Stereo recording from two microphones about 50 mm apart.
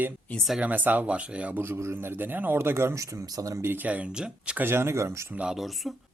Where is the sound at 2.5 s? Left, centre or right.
Right.